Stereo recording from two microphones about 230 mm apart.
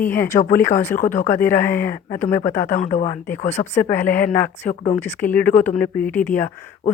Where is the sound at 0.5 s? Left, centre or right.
Centre.